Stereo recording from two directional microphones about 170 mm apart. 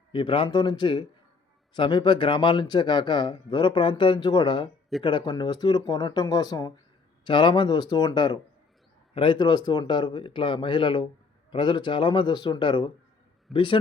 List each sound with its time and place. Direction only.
0.1 s a man's voice: 30° left (ahead or behind)